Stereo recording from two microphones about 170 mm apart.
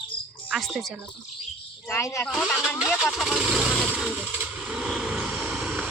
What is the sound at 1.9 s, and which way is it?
Speech, 15° left (ahead or behind).